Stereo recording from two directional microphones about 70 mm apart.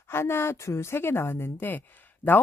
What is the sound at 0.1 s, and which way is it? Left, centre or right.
Speech, left.